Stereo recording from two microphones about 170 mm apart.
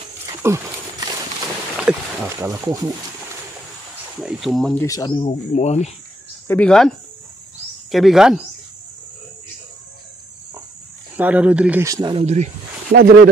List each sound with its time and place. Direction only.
0.4 s speech: 15° right (ahead or behind)
1.9 s speech: 5° right (ahead or behind)
2.2 s speech: 15° right (ahead or behind)
4.2 s speech: 5° right (ahead or behind)
4.7 s speech: 20° left (ahead or behind)
5.2 s speech: 40° left (ahead or behind)
6.4 s speech: 10° left (ahead or behind)
7.9 s speech: centre (ahead or behind)
11.1 s speech: 10° right (ahead or behind)
11.8 s speech: 20° right (ahead or behind)
12.2 s speech: 40° right (ahead or behind)
12.9 s speech: 60° right (ahead or behind)